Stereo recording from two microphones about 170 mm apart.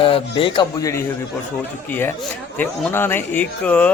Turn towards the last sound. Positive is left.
turn(degrees=10)  # may be behind; listen again after turning